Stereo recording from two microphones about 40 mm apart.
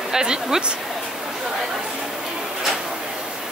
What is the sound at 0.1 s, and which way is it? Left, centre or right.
Speech, centre.